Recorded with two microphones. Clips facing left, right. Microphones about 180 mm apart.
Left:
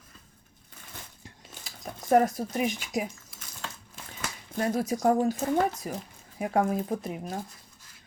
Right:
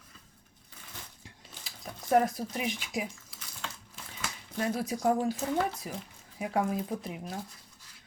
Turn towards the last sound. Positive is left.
turn(degrees=50)  # may be behind; listen again after turning